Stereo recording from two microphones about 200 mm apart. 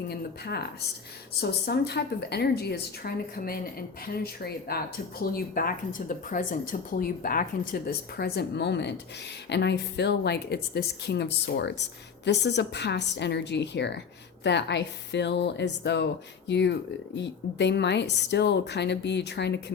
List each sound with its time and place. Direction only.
0.1 s a woman's voice: 55° left (ahead or behind)